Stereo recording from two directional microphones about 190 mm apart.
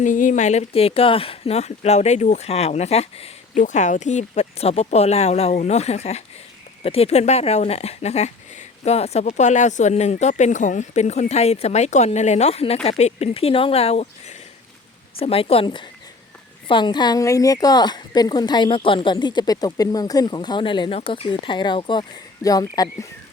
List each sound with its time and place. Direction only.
0.0 s speech: 45° left (ahead or behind); by 23.0 s 20° left (ahead or behind)